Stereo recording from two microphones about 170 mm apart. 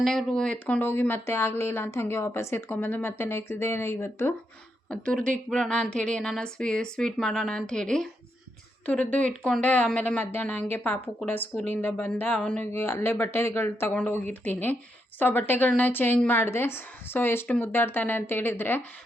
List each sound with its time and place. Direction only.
0.0 s a woman's voice: 5° left (ahead or behind)